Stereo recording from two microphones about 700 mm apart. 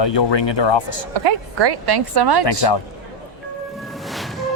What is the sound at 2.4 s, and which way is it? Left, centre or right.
Speech, left.